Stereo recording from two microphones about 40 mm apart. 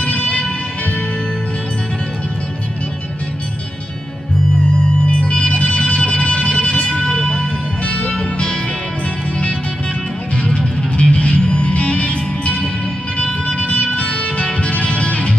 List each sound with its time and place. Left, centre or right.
0.0 s music: left
4.7 s music: left
7.1 s music: centre
7.8 s music: left
10.3 s music: left
13.9 s music: left